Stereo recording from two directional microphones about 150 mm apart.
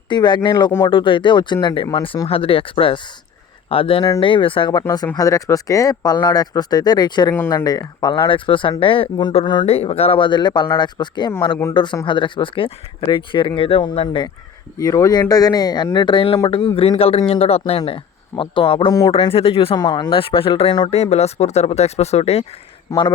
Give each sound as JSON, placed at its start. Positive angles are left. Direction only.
{"t": 0.1, "sound": "speech", "side_deg": 30}
{"t": 4.8, "sound": "speech", "side_deg": 20}
{"t": 14.8, "sound": "speech", "side_deg": 20}
{"t": 18.9, "sound": "speech", "side_deg": 25}
{"t": 19.1, "sound": "speech", "side_deg": 40}
{"t": 22.9, "sound": "speech", "side_deg": 30}